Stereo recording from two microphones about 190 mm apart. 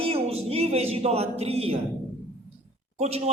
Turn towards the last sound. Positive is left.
turn(degrees=-35)  # may be behind; listen again after turning